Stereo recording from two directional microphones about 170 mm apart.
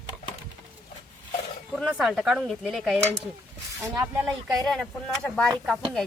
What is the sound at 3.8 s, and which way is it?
Speech, 15° right (ahead or behind).